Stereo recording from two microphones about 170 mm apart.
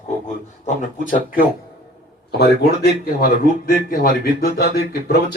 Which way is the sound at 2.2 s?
75° left (ahead or behind).